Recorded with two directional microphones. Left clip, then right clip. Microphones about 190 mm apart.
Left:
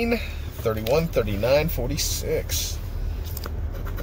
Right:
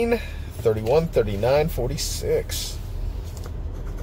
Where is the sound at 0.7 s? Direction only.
15° right (ahead or behind).